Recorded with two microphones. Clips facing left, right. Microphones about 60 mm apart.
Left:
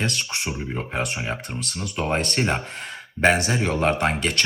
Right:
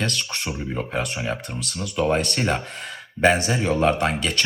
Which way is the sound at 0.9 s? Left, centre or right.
Left.